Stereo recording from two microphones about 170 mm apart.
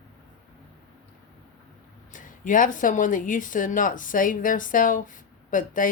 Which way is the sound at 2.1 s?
50° left (ahead or behind).